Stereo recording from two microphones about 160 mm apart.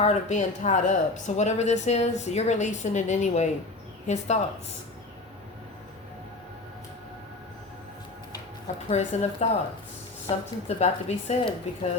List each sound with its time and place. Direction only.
0.0 s speech: 45° left (ahead or behind)
8.9 s speech: 45° left (ahead or behind)